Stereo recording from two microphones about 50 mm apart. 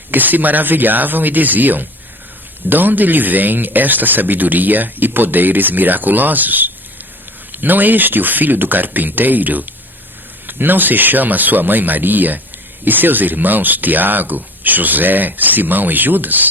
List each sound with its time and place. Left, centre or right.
0.1 s speech: right